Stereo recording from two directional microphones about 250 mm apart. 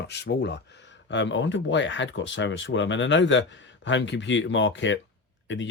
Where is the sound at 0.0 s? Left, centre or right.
Left.